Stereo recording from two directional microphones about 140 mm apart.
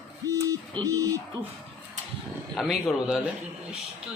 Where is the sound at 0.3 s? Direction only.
25° right (ahead or behind).